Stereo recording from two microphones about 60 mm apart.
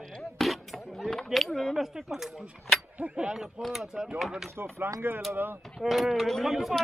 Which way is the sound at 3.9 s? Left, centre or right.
Centre.